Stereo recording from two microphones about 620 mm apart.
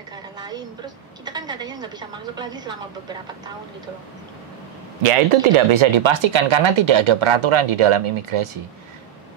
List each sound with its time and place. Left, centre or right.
0.4 s a sound: centre
1.2 s a woman's voice: centre
5.0 s speech: right